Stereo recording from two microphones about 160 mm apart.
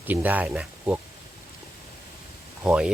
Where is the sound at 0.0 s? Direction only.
10° right (ahead or behind).